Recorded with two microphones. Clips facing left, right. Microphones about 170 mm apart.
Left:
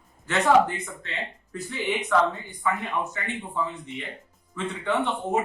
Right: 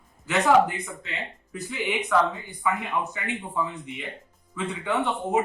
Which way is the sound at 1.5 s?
5° right (ahead or behind).